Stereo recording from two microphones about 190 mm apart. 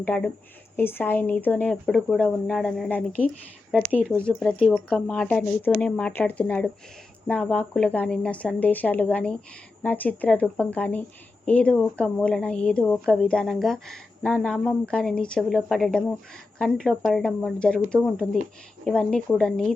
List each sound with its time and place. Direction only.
0.0 s a woman's voice: 10° left (ahead or behind)